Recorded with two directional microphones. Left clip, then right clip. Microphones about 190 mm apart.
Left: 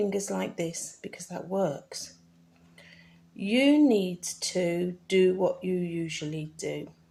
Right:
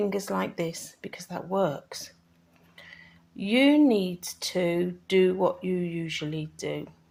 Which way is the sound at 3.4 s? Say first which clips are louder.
Right 1 dB; 20° right (ahead or behind).